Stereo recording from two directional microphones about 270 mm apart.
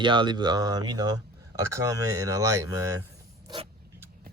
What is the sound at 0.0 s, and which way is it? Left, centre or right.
Speech, centre.